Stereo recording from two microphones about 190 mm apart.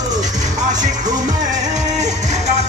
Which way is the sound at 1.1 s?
20° right (ahead or behind).